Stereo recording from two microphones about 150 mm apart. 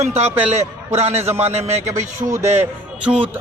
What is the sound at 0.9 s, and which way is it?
Speech, 45° right (ahead or behind).